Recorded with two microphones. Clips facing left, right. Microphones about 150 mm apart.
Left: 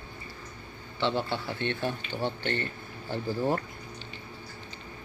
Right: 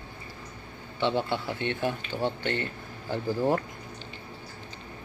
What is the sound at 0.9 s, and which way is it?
Speech, 15° right (ahead or behind).